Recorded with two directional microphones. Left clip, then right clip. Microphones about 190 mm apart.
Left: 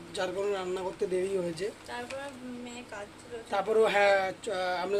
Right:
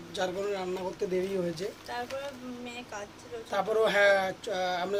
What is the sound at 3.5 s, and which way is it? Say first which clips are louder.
Speech: left 1 dB; 20° left (ahead or behind).